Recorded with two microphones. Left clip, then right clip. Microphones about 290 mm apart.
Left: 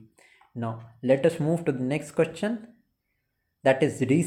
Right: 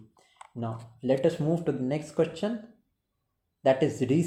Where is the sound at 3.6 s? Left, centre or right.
Centre.